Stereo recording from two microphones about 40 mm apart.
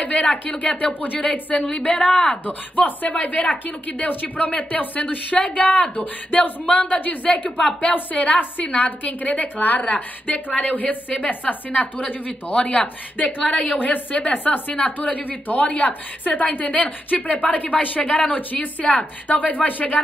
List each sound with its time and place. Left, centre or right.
0.0 s a woman's voice: left
2.0 s speech: centre
2.4 s a woman's voice: left
12.5 s a woman's voice: left
19.2 s speech: left